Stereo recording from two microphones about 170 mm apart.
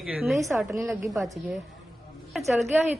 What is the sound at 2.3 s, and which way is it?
Speech, centre (ahead or behind).